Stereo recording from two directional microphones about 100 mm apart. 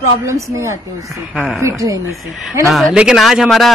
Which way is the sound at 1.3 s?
5° right (ahead or behind).